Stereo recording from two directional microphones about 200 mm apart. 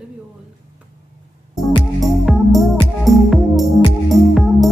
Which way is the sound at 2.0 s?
Centre (ahead or behind).